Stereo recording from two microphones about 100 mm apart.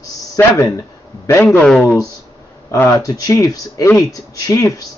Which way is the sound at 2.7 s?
30° left (ahead or behind).